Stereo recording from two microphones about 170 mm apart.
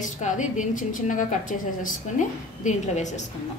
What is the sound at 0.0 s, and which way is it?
A woman's voice, 45° left (ahead or behind).